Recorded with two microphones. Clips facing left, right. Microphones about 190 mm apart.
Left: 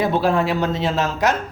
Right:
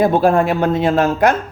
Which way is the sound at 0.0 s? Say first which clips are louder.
Right 5 dB; 50° right (ahead or behind).